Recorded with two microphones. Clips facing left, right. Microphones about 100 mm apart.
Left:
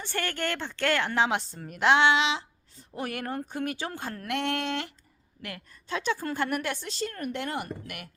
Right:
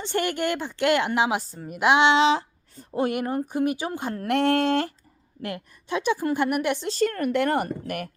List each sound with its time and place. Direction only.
0.0 s a woman's voice: 20° right (ahead or behind)
1.4 s a woman's voice: 5° right (ahead or behind)
2.1 s a sound: 40° right (ahead or behind)
2.9 s speech: 30° right (ahead or behind)
3.2 s a woman's voice: 15° right (ahead or behind)
4.2 s speech: 35° right (ahead or behind)
5.4 s a woman's voice: 30° right (ahead or behind)
5.9 s a woman's voice: 15° right (ahead or behind)
7.0 s speech: 85° right; by 8.1 s 45° right (ahead or behind)